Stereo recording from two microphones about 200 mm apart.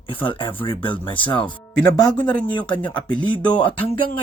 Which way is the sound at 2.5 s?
20° left (ahead or behind).